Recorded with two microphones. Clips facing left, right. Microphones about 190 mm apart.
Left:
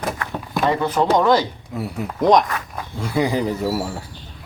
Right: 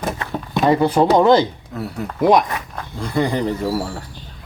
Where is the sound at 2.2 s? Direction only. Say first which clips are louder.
Right 1 dB; 5° right (ahead or behind).